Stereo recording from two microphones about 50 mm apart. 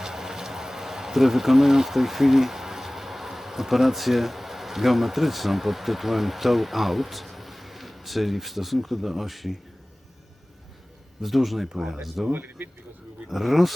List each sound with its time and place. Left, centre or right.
0.0 s speech: centre
11.2 s speech: centre
12.3 s speech: right
13.2 s speech: centre